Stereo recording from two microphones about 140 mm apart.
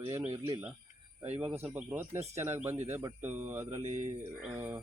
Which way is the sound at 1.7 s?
15° right (ahead or behind).